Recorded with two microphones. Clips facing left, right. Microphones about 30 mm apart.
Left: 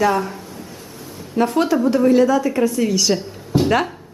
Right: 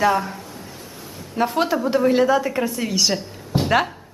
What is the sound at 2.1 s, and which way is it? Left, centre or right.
A woman's voice, right.